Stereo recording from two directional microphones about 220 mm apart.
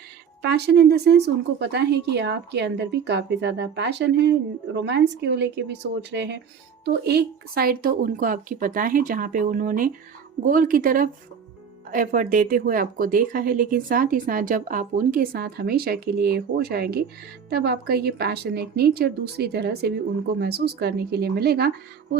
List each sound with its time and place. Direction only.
0.4 s speech: 50° right (ahead or behind)